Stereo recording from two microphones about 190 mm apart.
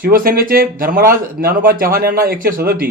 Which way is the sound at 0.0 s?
50° right (ahead or behind).